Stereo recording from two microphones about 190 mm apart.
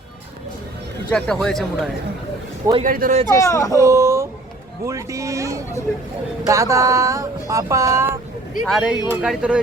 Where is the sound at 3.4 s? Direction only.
15° left (ahead or behind).